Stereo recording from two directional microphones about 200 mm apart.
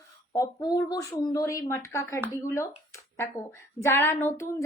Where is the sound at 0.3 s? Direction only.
15° left (ahead or behind).